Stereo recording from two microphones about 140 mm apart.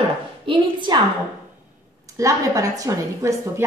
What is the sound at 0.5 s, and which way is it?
Speech, 35° right (ahead or behind).